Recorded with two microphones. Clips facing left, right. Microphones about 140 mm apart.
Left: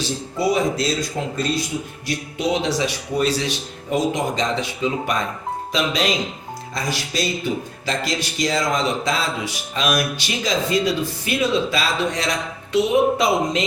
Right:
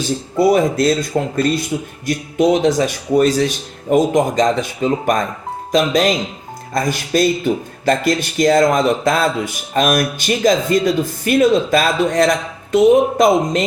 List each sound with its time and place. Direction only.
0.3 s speech: 50° right (ahead or behind)